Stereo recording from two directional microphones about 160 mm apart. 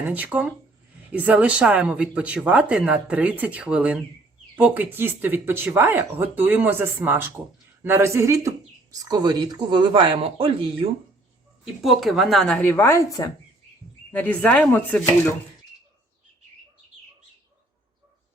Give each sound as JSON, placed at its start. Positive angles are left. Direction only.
{"t": 0.0, "sound": "speech", "side_deg": -10}
{"t": 11.6, "sound": "a woman's voice", "side_deg": 0}
{"t": 14.1, "sound": "speech", "side_deg": 10}